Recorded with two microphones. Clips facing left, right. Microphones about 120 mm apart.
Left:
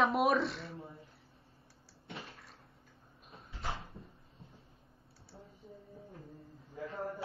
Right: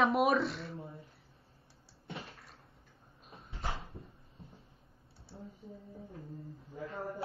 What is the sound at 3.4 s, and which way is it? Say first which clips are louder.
Dog: right 1 dB; 25° right (ahead or behind).